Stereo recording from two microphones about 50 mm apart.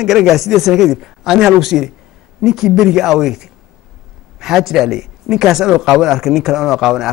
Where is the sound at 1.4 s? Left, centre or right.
Centre.